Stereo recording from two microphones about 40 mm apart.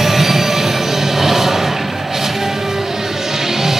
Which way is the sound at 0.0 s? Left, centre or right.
Centre.